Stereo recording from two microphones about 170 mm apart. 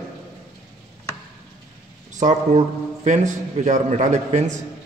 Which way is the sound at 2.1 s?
45° right (ahead or behind).